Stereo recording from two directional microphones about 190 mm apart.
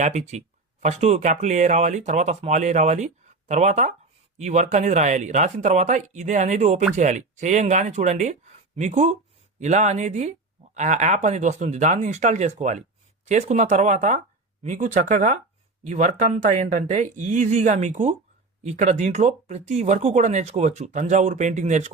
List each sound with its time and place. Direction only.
0.0 s speech: 40° right (ahead or behind)